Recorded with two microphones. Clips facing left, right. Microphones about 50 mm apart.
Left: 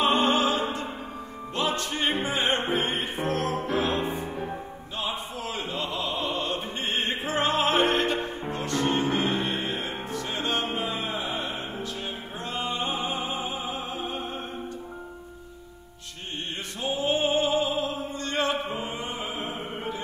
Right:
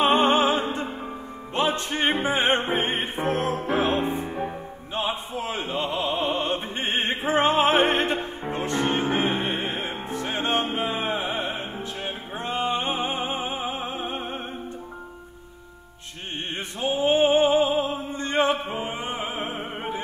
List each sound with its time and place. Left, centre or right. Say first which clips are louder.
0.0 s opera: right 3 dB; right
1.5 s music: right 3 dB; right
4.9 s opera: right 4 dB; right
8.5 s music: right 3 dB; right
16.8 s opera: right 5 dB; right